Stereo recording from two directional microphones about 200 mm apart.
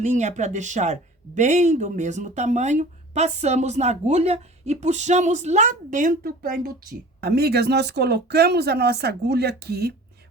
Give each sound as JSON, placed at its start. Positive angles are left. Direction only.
{"t": 0.0, "sound": "speech", "side_deg": -35}